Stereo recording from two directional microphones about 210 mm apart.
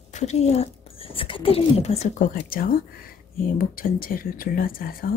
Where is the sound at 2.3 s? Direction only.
45° left (ahead or behind).